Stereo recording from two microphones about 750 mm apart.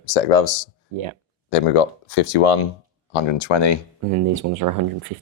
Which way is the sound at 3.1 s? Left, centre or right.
Left.